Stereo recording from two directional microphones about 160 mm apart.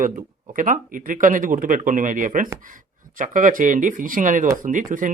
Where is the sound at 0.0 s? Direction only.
55° right (ahead or behind).